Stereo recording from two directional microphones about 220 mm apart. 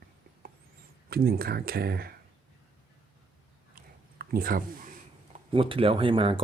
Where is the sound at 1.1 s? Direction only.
45° right (ahead or behind).